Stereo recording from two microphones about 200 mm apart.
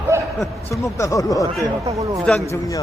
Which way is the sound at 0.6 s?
15° left (ahead or behind).